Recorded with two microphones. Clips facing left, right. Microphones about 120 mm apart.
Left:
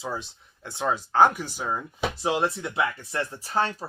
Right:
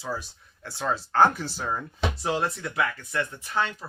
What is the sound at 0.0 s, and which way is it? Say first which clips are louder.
Speech: even; 20° left (ahead or behind).